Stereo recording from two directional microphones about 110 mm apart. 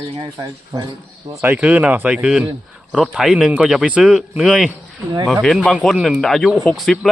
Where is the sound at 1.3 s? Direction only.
25° right (ahead or behind).